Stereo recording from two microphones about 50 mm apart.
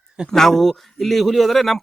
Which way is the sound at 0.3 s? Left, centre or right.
Centre.